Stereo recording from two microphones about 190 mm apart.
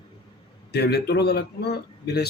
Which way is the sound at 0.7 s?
60° left (ahead or behind).